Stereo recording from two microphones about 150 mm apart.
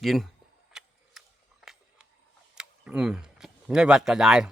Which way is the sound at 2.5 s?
5° right (ahead or behind).